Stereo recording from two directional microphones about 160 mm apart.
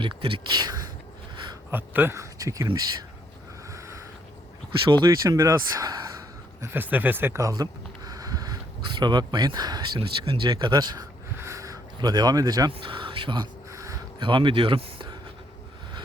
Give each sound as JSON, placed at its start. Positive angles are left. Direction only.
{"t": 0.0, "sound": "speech", "side_deg": -30}
{"t": 1.7, "sound": "speech", "side_deg": -10}
{"t": 3.7, "sound": "a sound", "side_deg": -20}
{"t": 4.9, "sound": "speech", "side_deg": -25}
{"t": 6.6, "sound": "a sound", "side_deg": -10}
{"t": 9.0, "sound": "speech", "side_deg": -25}
{"t": 14.2, "sound": "speech", "side_deg": -30}